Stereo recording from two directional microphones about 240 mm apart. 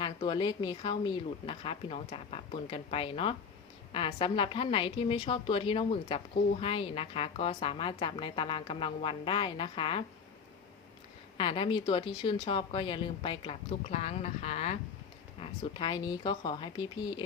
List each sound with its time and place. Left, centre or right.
0.0 s a woman's voice: centre
11.3 s a woman's voice: left